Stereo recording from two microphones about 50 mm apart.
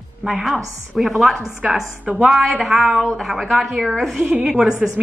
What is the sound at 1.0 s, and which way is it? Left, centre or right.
A woman's voice, centre.